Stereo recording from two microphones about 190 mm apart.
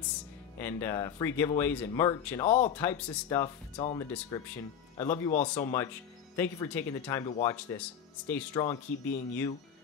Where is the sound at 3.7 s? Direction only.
30° left (ahead or behind); by 5.3 s 15° left (ahead or behind).